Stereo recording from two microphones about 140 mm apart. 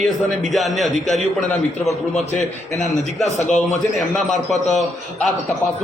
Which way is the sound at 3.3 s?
55° left (ahead or behind).